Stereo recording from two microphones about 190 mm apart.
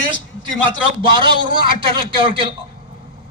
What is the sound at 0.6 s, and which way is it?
A man's voice, 25° right (ahead or behind).